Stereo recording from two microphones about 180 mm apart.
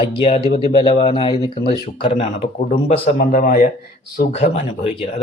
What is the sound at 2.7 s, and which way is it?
Speech, 50° left (ahead or behind).